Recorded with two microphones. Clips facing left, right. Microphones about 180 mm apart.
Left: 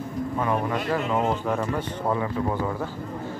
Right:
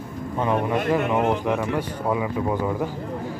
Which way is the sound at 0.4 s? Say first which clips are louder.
Right 4 dB; 20° right (ahead or behind).